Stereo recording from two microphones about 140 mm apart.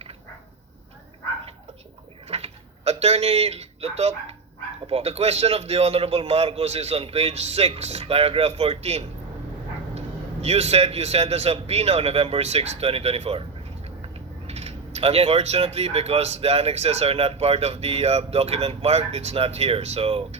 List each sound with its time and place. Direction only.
2.2 s a sound: 50° right (ahead or behind)
4.9 s speech: 45° right (ahead or behind)
10.4 s speech: 50° right (ahead or behind)
14.4 s speech: 50° right (ahead or behind)